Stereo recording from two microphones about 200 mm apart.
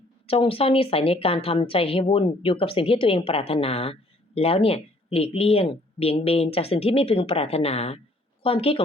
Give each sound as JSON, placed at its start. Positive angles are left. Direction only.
{"t": 0.3, "sound": "a woman's voice", "side_deg": 30}